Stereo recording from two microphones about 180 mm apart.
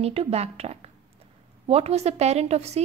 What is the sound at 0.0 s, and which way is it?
A woman's voice, 35° right (ahead or behind).